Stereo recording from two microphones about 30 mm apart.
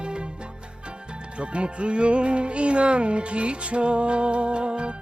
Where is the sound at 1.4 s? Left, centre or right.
Right.